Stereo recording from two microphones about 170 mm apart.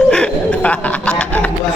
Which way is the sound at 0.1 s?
5° left (ahead or behind).